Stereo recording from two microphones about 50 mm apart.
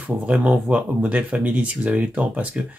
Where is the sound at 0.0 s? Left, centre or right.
Right.